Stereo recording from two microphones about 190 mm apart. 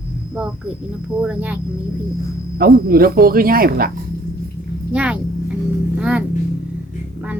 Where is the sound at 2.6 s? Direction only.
55° right (ahead or behind).